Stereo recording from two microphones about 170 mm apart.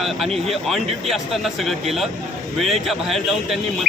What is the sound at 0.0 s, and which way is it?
A man's voice, centre (ahead or behind).